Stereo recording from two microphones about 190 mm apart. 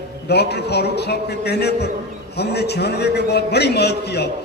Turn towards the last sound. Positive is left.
turn(degrees=60)  # may be behind; listen again after turning